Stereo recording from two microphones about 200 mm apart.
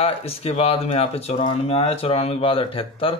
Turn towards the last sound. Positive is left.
turn(degrees=25)  # may be behind; listen again after turning